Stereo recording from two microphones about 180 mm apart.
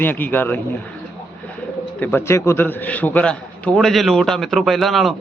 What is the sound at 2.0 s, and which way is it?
A man's voice, 10° left (ahead or behind).